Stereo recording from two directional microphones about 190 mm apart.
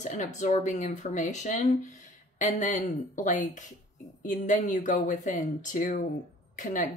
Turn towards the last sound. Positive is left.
turn(degrees=45)  # may be behind; listen again after turning